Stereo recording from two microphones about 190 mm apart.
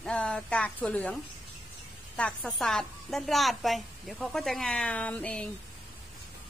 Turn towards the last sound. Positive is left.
turn(degrees=5)  # may be behind; listen again after turning